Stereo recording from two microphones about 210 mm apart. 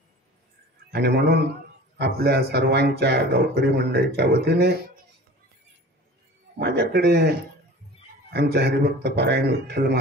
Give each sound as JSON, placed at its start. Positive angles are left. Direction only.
{"t": 0.9, "sound": "speech", "side_deg": -50}
{"t": 6.6, "sound": "speech", "side_deg": -50}